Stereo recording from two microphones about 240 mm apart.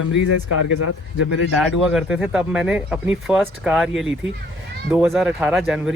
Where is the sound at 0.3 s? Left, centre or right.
Left.